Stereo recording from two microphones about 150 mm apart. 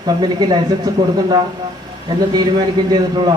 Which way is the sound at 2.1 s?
30° right (ahead or behind).